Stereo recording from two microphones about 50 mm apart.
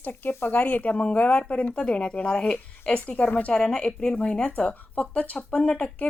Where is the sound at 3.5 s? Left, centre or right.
Centre.